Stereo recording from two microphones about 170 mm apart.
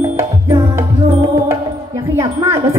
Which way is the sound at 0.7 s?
15° right (ahead or behind).